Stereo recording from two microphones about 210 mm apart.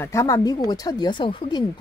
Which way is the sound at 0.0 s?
10° left (ahead or behind).